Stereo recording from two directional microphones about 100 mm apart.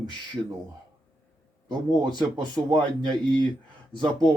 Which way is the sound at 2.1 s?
45° right (ahead or behind).